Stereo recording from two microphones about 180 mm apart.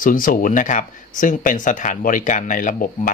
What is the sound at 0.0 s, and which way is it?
Speech, 50° left (ahead or behind).